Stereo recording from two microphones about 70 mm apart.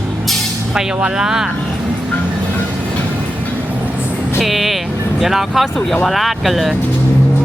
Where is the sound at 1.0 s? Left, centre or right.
Centre.